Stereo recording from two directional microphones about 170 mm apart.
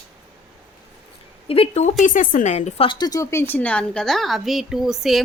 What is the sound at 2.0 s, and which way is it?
Speech, 50° left (ahead or behind).